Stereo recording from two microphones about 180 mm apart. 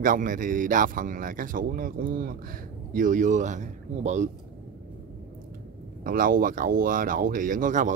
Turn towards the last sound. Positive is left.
turn(degrees=-45)  # may be behind; listen again after turning